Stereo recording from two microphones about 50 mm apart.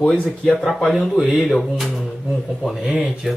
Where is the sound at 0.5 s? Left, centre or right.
Centre.